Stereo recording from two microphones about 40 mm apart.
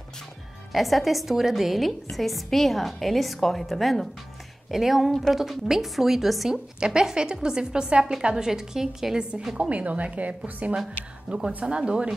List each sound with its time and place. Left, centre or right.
0.7 s a woman's voice: centre
6.5 s a woman's voice: right
9.6 s a woman's voice: right
11.2 s speech: right